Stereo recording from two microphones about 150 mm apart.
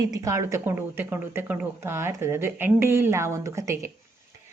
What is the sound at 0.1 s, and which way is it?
A woman's voice, 20° right (ahead or behind).